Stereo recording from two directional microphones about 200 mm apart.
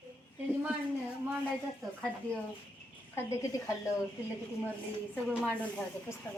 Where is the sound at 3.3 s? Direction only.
15° left (ahead or behind).